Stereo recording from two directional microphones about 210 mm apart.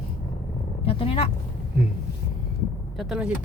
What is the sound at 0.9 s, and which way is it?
Speech, 25° left (ahead or behind).